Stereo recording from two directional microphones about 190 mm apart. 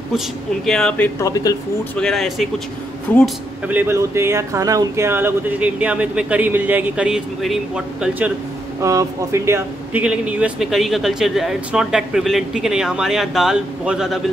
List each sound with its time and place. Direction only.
0.7 s speech: 5° left (ahead or behind)
1.3 s speech: 20° left (ahead or behind)
2.0 s speech: centre (ahead or behind)
3.6 s speech: 10° right (ahead or behind)